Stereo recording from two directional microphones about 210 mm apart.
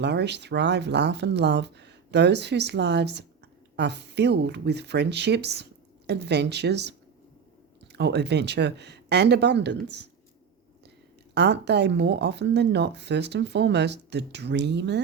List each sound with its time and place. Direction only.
0.0 s speech: 55° right (ahead or behind)
7.9 s speech: 55° right (ahead or behind)
11.3 s speech: 55° right (ahead or behind)